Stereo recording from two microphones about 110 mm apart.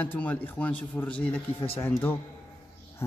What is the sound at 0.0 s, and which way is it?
A man's voice, 15° left (ahead or behind).